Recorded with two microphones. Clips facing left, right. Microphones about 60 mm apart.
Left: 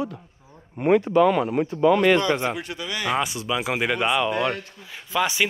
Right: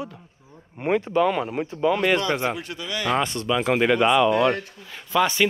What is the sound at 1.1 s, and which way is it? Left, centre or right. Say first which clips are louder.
Speech: left 3 dB; left.